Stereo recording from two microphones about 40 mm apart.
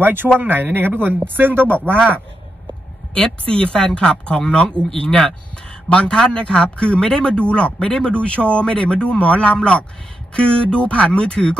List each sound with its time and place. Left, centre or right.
0.0 s speech: right
3.2 s speech: left
5.9 s speech: left